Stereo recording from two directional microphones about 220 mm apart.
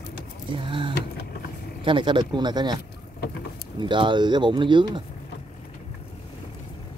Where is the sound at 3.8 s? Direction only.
20° right (ahead or behind).